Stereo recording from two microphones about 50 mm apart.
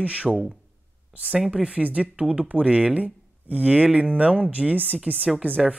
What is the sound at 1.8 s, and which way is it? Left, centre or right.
Speech, right.